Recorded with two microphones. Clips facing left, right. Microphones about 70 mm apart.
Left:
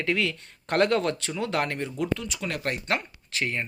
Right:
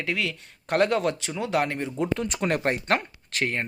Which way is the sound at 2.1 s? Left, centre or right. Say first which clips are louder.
Right 5 dB; right.